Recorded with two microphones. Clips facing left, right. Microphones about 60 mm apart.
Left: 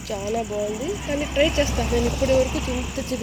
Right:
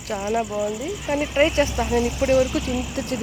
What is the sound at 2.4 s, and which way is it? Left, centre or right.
Speech, left.